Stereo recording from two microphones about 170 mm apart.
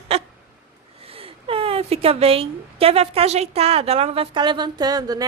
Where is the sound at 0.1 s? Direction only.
35° right (ahead or behind).